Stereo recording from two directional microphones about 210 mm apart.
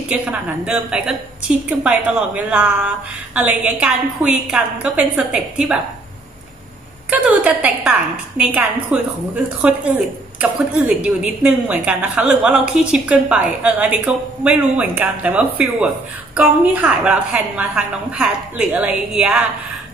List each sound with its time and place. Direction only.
0.1 s a woman's voice: 5° right (ahead or behind)
7.1 s a woman's voice: 5° right (ahead or behind)